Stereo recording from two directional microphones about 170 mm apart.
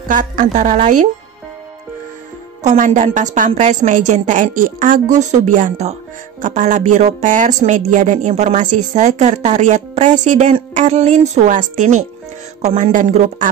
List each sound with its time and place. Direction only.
0.1 s a woman's voice: 50° right (ahead or behind)
2.6 s a woman's voice: 45° right (ahead or behind)